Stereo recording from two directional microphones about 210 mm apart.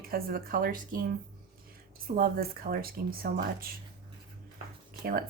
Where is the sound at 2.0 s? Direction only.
45° right (ahead or behind).